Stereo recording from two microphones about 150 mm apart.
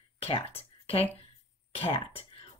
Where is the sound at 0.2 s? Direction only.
40° left (ahead or behind).